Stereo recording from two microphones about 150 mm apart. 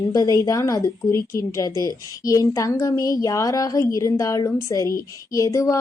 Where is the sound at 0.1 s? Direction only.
20° left (ahead or behind).